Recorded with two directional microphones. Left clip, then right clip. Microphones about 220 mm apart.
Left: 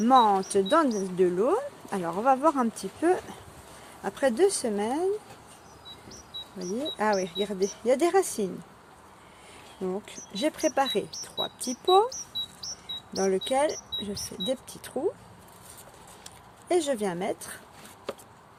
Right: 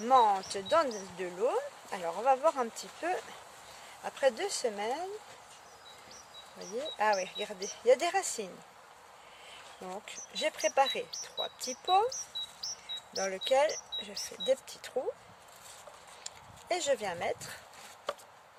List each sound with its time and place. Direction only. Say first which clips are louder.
0.0 s speech: left 5 dB; 5° left (ahead or behind)
6.6 s speech: left 3 dB; 5° left (ahead or behind)
9.9 s speech: left 5 dB; 5° left (ahead or behind)
12.6 s bird: left 3 dB; 5° left (ahead or behind)
13.3 s speech: even; centre (ahead or behind)
16.2 s speech: left 2 dB; centre (ahead or behind)